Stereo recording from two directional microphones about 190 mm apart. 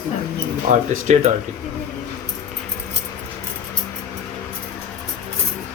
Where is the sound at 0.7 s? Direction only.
40° right (ahead or behind).